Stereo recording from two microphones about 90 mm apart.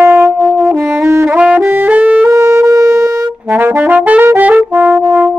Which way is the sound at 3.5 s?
25° right (ahead or behind).